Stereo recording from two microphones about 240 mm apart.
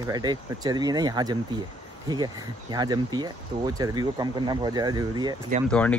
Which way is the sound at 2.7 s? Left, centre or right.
Centre.